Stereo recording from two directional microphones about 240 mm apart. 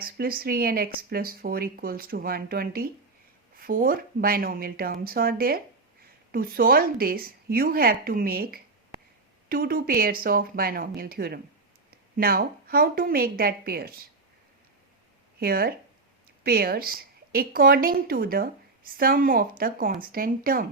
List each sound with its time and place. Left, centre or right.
0.0 s speech: right
15.4 s speech: right